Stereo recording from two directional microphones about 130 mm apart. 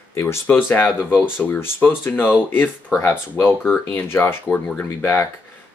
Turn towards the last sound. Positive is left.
turn(degrees=15)  # may be behind; listen again after turning